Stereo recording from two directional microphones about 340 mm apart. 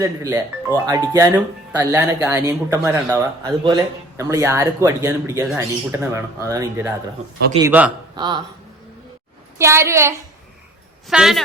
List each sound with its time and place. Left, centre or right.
0.0 s speech: centre
9.6 s speech: centre